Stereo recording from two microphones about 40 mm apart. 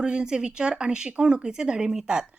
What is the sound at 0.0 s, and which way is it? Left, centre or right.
Speech, right.